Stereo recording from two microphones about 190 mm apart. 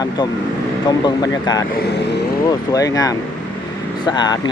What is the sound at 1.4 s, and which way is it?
Speech, 20° left (ahead or behind).